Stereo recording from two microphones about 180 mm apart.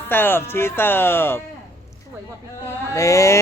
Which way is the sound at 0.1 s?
10° left (ahead or behind).